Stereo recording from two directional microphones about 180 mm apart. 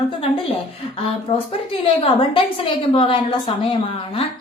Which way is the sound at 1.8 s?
30° left (ahead or behind).